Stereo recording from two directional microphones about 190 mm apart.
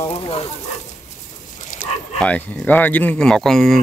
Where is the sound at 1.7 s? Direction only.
45° left (ahead or behind).